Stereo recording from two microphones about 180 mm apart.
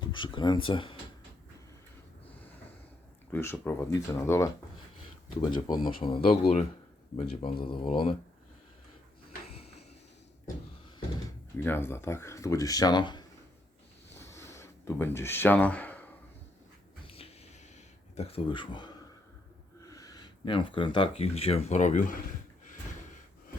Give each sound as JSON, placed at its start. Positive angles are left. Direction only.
{"t": 0.0, "sound": "speech", "side_deg": 25}
{"t": 3.3, "sound": "speech", "side_deg": 10}
{"t": 11.5, "sound": "speech", "side_deg": 10}
{"t": 14.2, "sound": "a sound", "side_deg": 15}
{"t": 17.1, "sound": "a sound", "side_deg": 30}
{"t": 18.2, "sound": "speech", "side_deg": 30}